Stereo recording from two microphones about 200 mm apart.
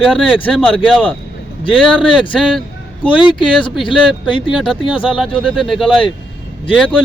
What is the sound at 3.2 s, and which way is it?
Speech, 25° left (ahead or behind).